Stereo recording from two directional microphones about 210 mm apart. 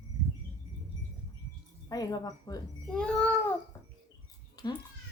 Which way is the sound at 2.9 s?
5° left (ahead or behind).